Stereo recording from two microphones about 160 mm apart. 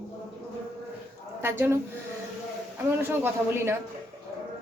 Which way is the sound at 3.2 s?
15° right (ahead or behind).